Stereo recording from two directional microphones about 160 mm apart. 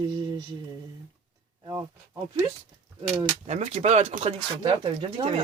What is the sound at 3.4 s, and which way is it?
Speech, 40° right (ahead or behind).